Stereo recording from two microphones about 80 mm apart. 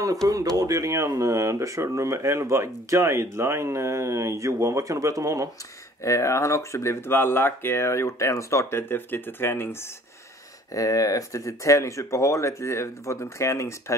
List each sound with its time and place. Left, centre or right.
0.3 s speech: right
6.0 s speech: left
10.7 s speech: left